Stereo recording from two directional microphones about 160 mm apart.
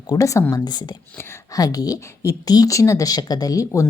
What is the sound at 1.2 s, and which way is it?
Speech, 15° left (ahead or behind).